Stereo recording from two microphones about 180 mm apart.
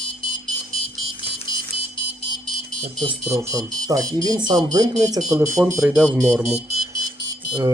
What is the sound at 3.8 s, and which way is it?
Speech, 20° right (ahead or behind).